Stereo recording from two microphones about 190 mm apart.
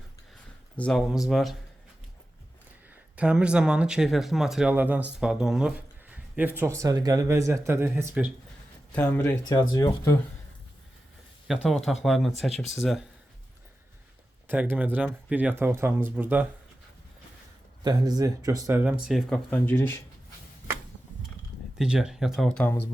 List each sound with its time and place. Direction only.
0.8 s speech: 5° left (ahead or behind)
2.9 s speech: 5° right (ahead or behind)
8.9 s speech: 5° left (ahead or behind)
9.5 s speech: 15° left (ahead or behind)
11.4 s speech: centre (ahead or behind)
14.4 s speech: 10° right (ahead or behind)
17.8 s speech: 20° right (ahead or behind); by 20.0 s 10° left (ahead or behind)
21.8 s speech: 5° right (ahead or behind)